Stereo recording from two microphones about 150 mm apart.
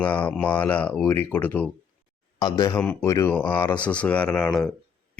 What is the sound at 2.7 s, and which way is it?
Speech, 10° left (ahead or behind).